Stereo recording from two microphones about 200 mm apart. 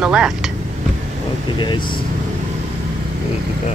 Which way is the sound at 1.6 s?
25° left (ahead or behind).